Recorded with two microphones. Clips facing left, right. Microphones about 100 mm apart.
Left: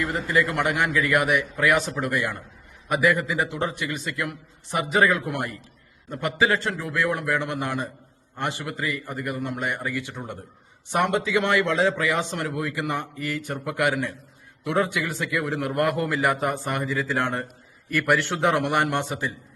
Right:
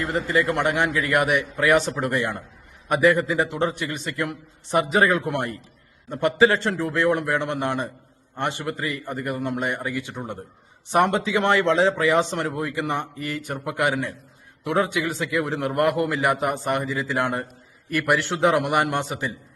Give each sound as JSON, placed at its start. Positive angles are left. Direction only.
{"t": 0.0, "sound": "a man's voice", "side_deg": -30}
{"t": 9.7, "sound": "a man's voice", "side_deg": -20}
{"t": 10.9, "sound": "a man's voice", "side_deg": -30}